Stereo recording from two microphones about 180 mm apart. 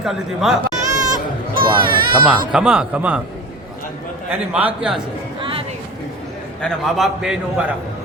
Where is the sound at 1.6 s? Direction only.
25° right (ahead or behind).